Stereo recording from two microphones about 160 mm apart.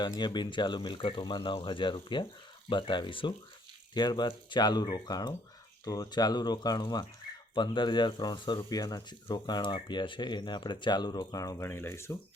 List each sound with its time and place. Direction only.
0.0 s speech: 25° left (ahead or behind)